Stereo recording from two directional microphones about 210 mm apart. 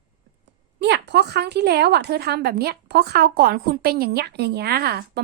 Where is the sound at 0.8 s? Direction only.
55° right (ahead or behind).